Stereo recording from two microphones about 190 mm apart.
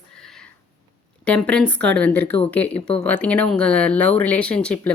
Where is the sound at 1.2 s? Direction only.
5° left (ahead or behind).